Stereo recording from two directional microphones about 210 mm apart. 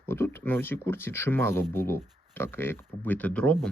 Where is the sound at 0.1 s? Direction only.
10° left (ahead or behind).